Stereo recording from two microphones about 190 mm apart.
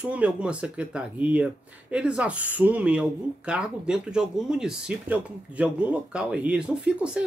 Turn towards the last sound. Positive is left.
turn(degrees=-5)  # may be behind; listen again after turning